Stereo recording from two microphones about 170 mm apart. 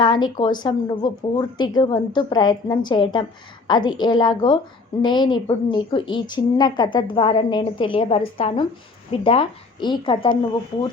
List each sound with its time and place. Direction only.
0.0 s a woman's voice: 30° left (ahead or behind)